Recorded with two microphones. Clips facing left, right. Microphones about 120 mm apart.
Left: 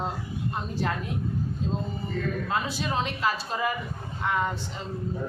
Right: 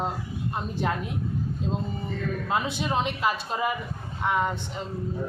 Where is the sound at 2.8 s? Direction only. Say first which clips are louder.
Right 2 dB; 20° right (ahead or behind).